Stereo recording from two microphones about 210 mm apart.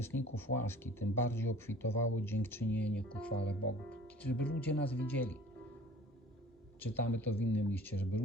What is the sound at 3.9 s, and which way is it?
Speech, 5° left (ahead or behind).